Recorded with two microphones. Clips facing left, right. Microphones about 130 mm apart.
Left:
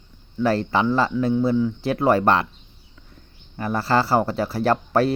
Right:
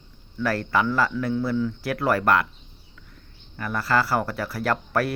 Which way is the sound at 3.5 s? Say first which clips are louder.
Left 3 dB; 30° left (ahead or behind).